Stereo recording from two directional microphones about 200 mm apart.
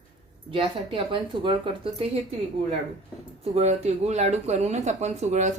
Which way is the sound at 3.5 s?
30° right (ahead or behind).